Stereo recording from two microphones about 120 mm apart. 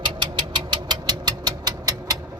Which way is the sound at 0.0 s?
40° right (ahead or behind).